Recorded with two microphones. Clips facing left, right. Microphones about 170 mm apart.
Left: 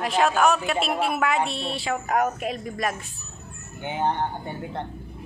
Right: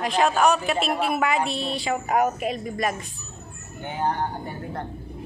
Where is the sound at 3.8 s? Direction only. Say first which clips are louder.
Left 1 dB; 20° left (ahead or behind).